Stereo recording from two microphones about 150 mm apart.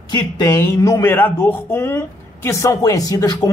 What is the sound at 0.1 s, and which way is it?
A man's voice, 25° left (ahead or behind).